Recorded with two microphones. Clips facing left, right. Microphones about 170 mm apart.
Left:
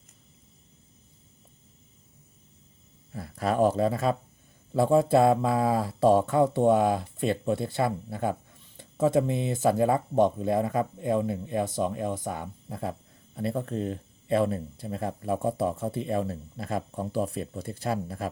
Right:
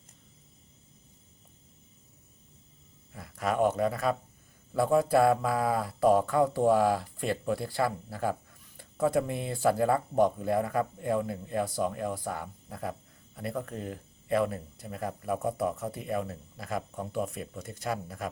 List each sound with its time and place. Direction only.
3.1 s speech: 30° left (ahead or behind)